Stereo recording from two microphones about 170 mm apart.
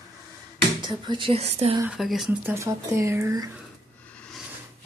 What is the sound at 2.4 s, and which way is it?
Speech, 15° right (ahead or behind).